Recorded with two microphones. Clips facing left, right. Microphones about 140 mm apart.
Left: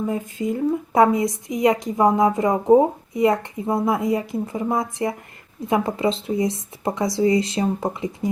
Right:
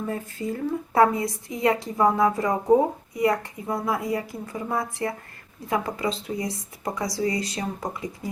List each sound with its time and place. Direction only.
0.0 s a woman's voice: 15° left (ahead or behind)